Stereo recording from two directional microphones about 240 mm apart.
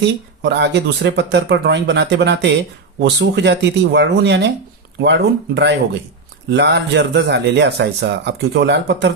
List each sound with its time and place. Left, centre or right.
0.0 s speech: right